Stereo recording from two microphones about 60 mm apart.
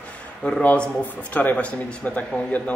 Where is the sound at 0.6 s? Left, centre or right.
Left.